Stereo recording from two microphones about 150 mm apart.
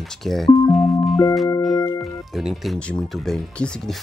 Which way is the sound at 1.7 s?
20° left (ahead or behind).